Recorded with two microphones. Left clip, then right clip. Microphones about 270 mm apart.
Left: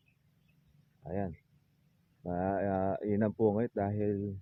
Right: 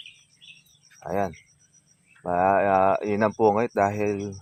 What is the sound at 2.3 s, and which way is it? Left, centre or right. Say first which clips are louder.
Speech: right 13 dB; centre.